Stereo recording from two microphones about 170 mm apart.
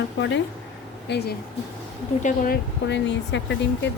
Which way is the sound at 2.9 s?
90° left.